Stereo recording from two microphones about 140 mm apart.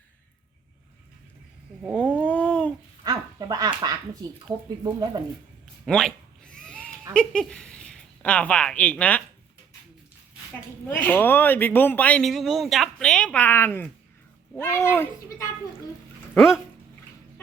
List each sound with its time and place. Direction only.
2.0 s a sound: 10° left (ahead or behind)
3.0 s a sound: 25° right (ahead or behind)
3.8 s speech: 25° right (ahead or behind)
5.8 s cat: 5° left (ahead or behind)
7.1 s speech: 5° left (ahead or behind)
11.0 s speech: 15° left (ahead or behind)
12.3 s speech: centre (ahead or behind); by 15.4 s 15° left (ahead or behind)